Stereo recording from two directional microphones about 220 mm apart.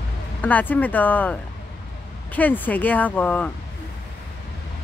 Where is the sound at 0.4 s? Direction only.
5° left (ahead or behind).